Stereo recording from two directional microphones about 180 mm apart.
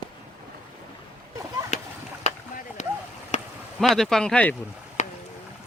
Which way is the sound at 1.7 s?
40° left (ahead or behind).